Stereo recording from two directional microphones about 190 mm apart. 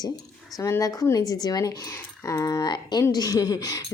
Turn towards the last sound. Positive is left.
turn(degrees=20)  # may be behind; listen again after turning